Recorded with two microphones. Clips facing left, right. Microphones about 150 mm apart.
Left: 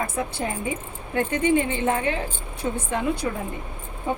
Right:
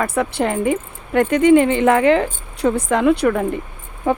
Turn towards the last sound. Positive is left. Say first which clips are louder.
# right 8 dB
turn(degrees=-65)  # may be behind; listen again after turning